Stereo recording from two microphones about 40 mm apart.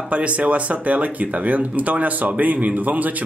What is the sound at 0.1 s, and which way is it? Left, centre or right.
Speech, right.